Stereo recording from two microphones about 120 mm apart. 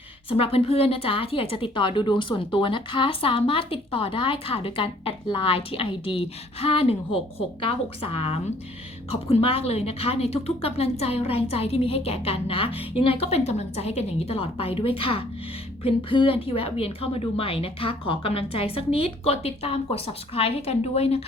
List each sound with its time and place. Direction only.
0.3 s a woman's voice: 55° left (ahead or behind)